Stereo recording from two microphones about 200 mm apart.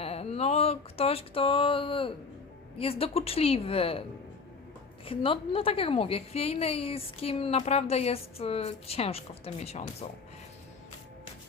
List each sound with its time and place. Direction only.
0.0 s a sound: 30° left (ahead or behind)
2.7 s a woman's voice: 30° left (ahead or behind)
5.0 s a woman's voice: 25° left (ahead or behind)